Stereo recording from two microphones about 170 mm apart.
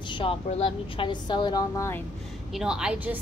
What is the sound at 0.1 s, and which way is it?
A woman's voice, 30° left (ahead or behind).